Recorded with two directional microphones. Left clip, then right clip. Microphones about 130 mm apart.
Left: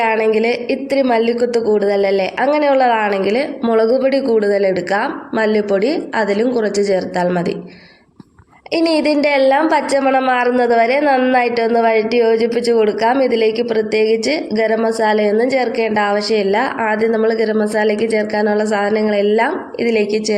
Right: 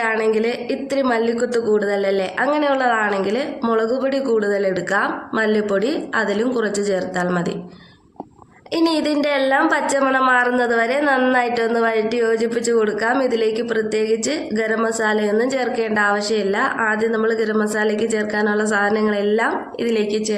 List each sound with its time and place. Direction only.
0.0 s a woman's voice: 25° left (ahead or behind)
8.7 s a woman's voice: 30° left (ahead or behind)